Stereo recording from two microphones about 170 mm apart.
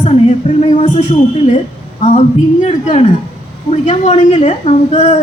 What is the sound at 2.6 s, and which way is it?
A woman's voice, 35° left (ahead or behind).